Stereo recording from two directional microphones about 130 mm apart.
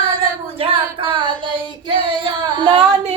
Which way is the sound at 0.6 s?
40° right (ahead or behind).